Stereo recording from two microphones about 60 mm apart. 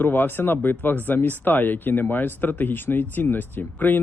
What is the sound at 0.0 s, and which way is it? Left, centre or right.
Speech, left.